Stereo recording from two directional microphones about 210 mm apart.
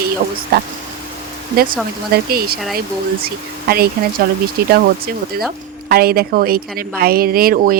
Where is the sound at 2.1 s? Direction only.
45° right (ahead or behind).